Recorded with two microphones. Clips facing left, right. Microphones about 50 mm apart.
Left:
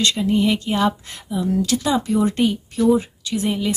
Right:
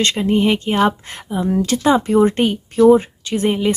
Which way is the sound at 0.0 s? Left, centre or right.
Right.